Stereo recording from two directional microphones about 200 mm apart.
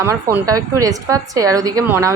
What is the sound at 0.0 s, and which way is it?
A woman's voice, 15° right (ahead or behind).